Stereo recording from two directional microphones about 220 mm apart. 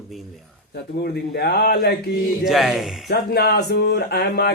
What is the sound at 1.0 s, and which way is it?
Speech, 45° left (ahead or behind).